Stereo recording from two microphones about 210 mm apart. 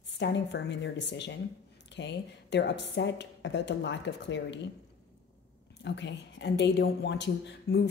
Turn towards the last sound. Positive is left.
turn(degrees=55)  # may be behind; listen again after turning